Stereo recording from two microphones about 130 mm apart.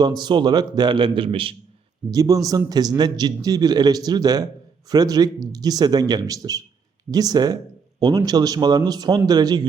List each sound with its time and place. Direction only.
0.0 s speech: 35° right (ahead or behind)
2.0 s a man's voice: 30° right (ahead or behind)